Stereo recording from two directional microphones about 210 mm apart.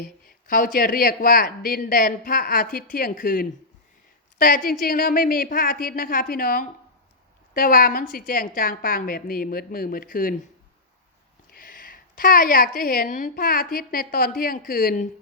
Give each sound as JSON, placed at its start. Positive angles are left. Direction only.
{"t": 0.0, "sound": "a woman's voice", "side_deg": 40}
{"t": 11.5, "sound": "a woman's voice", "side_deg": 40}